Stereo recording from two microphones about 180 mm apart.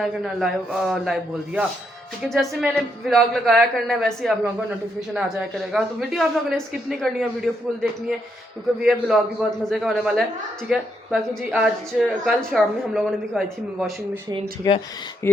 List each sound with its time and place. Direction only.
0.0 s a woman's voice: centre (ahead or behind)
14.6 s speech: 20° left (ahead or behind)